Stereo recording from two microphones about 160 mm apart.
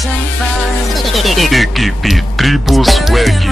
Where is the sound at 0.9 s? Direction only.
Centre (ahead or behind).